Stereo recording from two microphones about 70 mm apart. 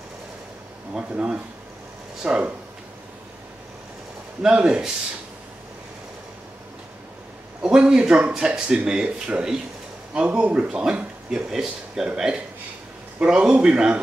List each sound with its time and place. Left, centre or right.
0.9 s speech: centre
4.4 s speech: centre
7.6 s speech: centre
13.2 s speech: centre